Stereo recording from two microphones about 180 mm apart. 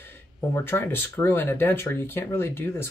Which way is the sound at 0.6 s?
10° left (ahead or behind).